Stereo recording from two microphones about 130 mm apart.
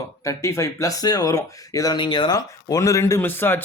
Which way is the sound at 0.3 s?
25° left (ahead or behind).